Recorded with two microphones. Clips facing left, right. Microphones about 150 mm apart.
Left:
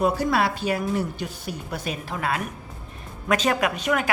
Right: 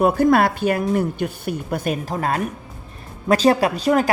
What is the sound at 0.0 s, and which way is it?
A woman's voice, 50° right (ahead or behind).